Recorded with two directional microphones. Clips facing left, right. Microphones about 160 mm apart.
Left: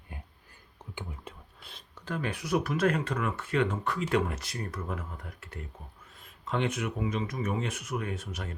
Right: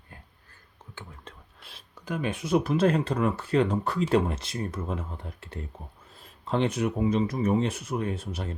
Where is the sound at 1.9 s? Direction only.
15° right (ahead or behind).